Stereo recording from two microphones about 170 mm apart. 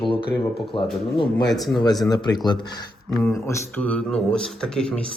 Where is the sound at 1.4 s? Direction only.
Centre (ahead or behind).